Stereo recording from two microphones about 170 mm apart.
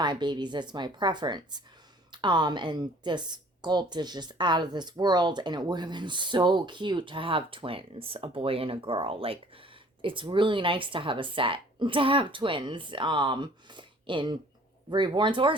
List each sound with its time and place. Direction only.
0.0 s a woman's voice: 25° right (ahead or behind)